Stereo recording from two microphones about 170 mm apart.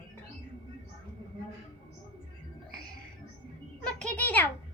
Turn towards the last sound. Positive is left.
turn(degrees=10)  # may be behind; listen again after turning